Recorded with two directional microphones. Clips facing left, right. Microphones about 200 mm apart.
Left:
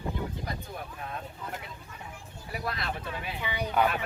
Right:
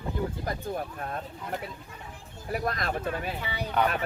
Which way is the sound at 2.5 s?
45° right (ahead or behind).